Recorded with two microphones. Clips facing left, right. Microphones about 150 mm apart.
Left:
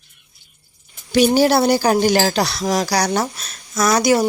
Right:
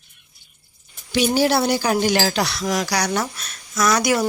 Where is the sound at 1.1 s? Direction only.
45° left (ahead or behind).